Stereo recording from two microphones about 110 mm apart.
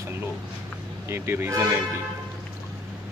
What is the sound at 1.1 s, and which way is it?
Speech, 25° right (ahead or behind).